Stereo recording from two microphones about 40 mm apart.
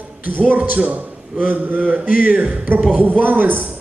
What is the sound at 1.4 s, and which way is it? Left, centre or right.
Speech, right.